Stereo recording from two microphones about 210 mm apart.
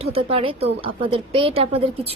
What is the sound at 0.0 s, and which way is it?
A woman's voice, 25° right (ahead or behind).